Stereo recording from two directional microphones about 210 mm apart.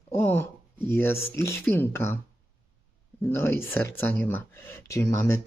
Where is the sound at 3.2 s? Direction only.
10° left (ahead or behind).